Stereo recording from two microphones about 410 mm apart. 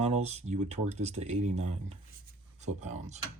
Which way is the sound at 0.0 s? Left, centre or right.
Centre.